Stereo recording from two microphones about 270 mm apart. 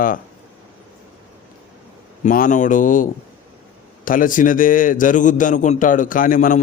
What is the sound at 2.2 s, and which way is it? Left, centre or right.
A man's voice, left.